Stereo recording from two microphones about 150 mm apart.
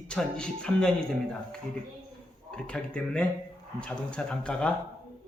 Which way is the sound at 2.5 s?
5° left (ahead or behind).